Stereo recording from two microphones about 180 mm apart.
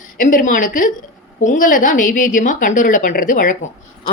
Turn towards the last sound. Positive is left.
turn(degrees=45)  # may be behind; listen again after turning